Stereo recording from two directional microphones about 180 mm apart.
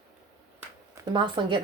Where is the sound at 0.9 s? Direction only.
25° right (ahead or behind).